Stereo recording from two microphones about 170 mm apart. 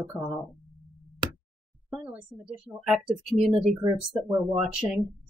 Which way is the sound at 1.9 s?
5° right (ahead or behind).